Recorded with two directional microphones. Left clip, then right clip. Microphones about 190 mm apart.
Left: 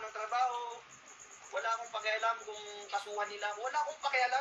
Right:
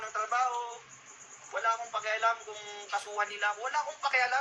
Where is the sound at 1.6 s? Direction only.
5° left (ahead or behind).